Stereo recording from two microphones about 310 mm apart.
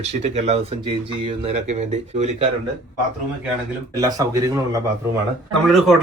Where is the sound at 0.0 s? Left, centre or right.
Right.